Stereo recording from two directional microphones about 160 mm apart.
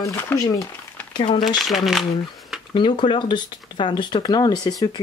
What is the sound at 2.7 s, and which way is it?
Speech, 30° left (ahead or behind).